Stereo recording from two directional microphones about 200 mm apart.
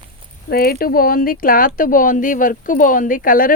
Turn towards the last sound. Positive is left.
turn(degrees=45)  # may be behind; listen again after turning